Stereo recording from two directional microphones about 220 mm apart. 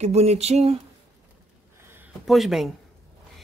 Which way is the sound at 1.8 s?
10° right (ahead or behind).